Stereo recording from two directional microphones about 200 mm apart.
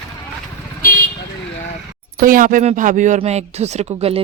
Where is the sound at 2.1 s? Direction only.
45° right (ahead or behind).